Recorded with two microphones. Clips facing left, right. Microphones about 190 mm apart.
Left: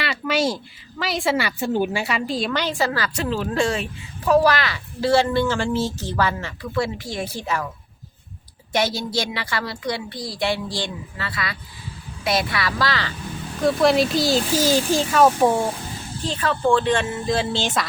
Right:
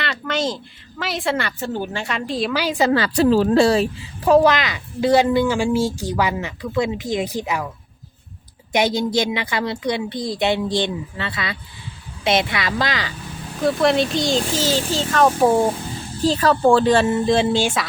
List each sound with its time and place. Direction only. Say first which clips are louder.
0.0 s a sound: left 1 dB; 10° left (ahead or behind)
0.9 s a woman's voice: left 1 dB; centre (ahead or behind)
2.7 s a woman's voice: right 6 dB; 20° right (ahead or behind)
3.2 s speech: right 9 dB; 35° right (ahead or behind)
4.3 s a woman's voice: right 3 dB; 20° right (ahead or behind)
8.7 s a woman's voice: right 4 dB; 20° right (ahead or behind)
13.6 s a woman's voice: even; centre (ahead or behind)
16.2 s speech: right 6 dB; 35° right (ahead or behind)
17.5 s a woman's voice: right 4 dB; 10° right (ahead or behind)